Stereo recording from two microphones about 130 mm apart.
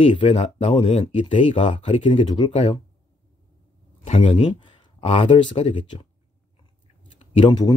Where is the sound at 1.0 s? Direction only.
40° left (ahead or behind).